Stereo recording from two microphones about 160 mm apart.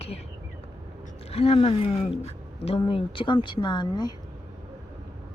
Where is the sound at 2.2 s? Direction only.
40° left (ahead or behind).